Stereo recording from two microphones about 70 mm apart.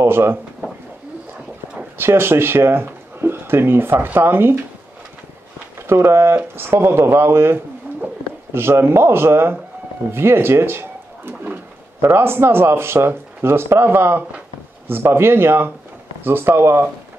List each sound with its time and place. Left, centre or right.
0.0 s speech: right
2.0 s speech: right
5.8 s speech: right